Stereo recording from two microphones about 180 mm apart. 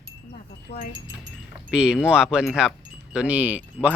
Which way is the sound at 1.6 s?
5° right (ahead or behind).